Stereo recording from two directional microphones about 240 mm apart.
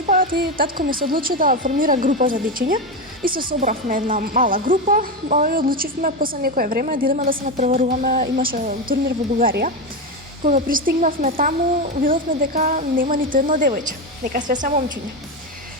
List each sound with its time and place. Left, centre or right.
0.0 s speech: right